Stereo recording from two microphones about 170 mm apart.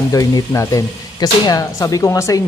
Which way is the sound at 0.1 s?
20° left (ahead or behind).